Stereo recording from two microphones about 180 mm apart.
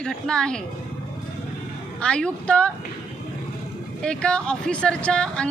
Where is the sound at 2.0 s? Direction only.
5° left (ahead or behind).